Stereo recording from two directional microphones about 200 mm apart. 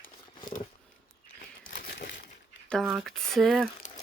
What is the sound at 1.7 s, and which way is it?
Crumpling, 55° left (ahead or behind).